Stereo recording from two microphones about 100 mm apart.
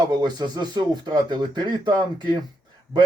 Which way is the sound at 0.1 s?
45° right (ahead or behind).